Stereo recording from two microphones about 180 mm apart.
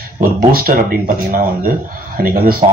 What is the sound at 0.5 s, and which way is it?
Speech, 50° right (ahead or behind).